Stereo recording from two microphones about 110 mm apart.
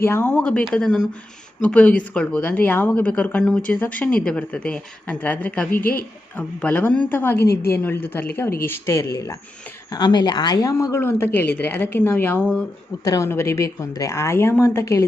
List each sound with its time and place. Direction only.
0.0 s a woman's voice: 15° left (ahead or behind)
9.9 s a woman's voice: 40° left (ahead or behind); by 12.6 s 15° left (ahead or behind)
13.1 s a woman's voice: 25° left (ahead or behind)